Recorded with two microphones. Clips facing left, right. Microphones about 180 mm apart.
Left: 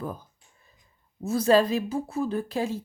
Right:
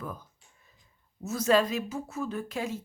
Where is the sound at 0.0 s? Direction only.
30° left (ahead or behind).